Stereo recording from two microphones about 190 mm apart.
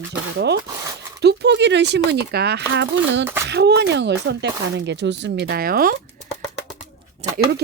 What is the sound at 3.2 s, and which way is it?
Speech, 10° right (ahead or behind).